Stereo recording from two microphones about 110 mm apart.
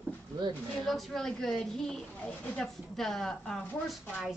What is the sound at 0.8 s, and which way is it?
Speech, centre (ahead or behind).